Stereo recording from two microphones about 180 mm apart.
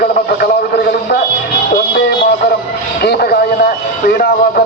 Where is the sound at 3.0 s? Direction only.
60° left (ahead or behind).